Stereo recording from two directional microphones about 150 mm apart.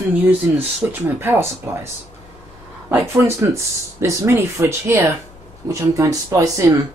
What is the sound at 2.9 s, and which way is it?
Speech, 15° right (ahead or behind).